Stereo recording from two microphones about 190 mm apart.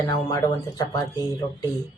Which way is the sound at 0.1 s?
20° left (ahead or behind).